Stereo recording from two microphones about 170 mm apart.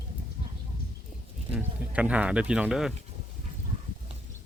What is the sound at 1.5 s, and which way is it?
Speech, 10° right (ahead or behind).